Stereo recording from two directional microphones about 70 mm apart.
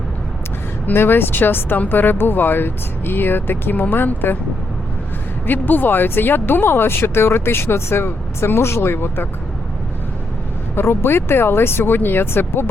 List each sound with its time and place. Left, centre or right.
0.9 s speech: left
5.5 s speech: left
10.8 s speech: left